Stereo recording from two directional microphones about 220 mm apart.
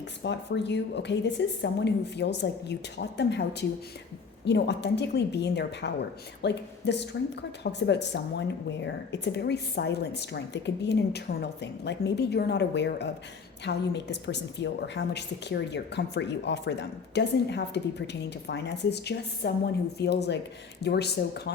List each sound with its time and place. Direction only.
0.2 s a woman's voice: 50° left (ahead or behind)